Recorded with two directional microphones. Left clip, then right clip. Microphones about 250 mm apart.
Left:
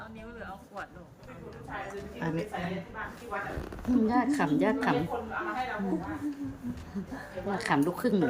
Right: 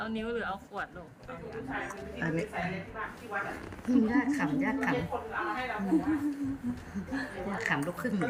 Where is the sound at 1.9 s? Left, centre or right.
Centre.